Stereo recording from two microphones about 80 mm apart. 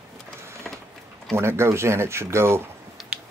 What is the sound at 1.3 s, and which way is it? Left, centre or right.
Speech, right.